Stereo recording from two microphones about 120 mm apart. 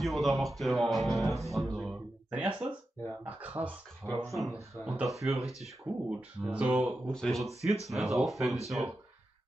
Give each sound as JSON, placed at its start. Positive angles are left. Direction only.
{"t": 0.0, "sound": "speech", "side_deg": 0}
{"t": 2.3, "sound": "speech", "side_deg": -10}
{"t": 4.0, "sound": "speech", "side_deg": 15}
{"t": 4.7, "sound": "speech", "side_deg": -5}
{"t": 7.1, "sound": "speech", "side_deg": 5}